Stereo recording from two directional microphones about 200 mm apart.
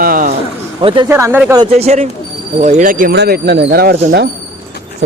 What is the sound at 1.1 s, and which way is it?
Speech, 10° right (ahead or behind).